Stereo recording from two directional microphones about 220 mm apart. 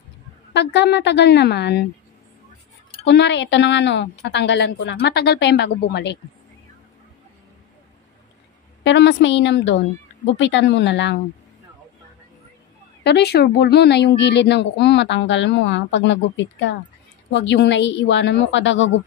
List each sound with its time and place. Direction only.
0.5 s a woman's voice: 50° left (ahead or behind)
3.1 s a woman's voice: 50° left (ahead or behind)
8.8 s a woman's voice: 55° left (ahead or behind)
13.0 s a woman's voice: 50° left (ahead or behind)